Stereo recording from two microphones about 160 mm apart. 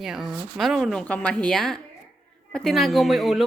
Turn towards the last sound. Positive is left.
turn(degrees=0)  # may be behind; listen again after turning